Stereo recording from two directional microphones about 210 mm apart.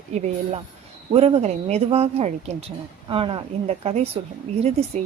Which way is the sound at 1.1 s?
30° right (ahead or behind).